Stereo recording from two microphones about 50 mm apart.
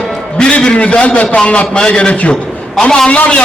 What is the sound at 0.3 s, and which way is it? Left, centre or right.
A man's voice, centre.